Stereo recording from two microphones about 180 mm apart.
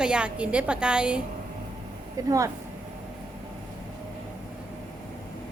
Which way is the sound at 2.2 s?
20° right (ahead or behind).